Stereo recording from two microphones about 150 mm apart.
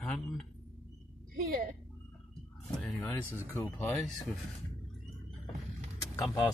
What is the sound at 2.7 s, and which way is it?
Speech, centre (ahead or behind).